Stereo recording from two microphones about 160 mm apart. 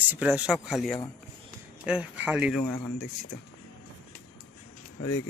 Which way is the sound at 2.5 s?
5° left (ahead or behind).